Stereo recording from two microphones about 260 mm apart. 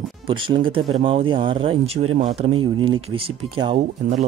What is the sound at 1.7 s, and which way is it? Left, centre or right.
Speech, right.